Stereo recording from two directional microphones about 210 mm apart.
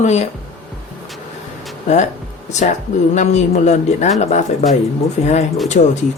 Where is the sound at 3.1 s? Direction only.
35° left (ahead or behind).